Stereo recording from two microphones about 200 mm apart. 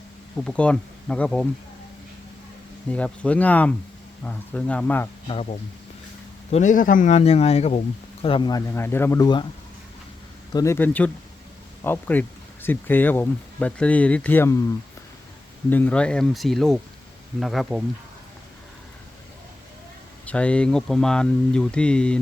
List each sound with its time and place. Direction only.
0.4 s speech: 5° left (ahead or behind)
2.9 s speech: 5° left (ahead or behind)
5.3 s speech: 30° left (ahead or behind)
10.5 s speech: 15° left (ahead or behind)
15.7 s speech: 10° left (ahead or behind)
20.2 s speech: 5° left (ahead or behind)